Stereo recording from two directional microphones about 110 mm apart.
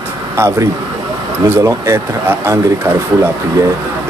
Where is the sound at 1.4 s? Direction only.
25° right (ahead or behind).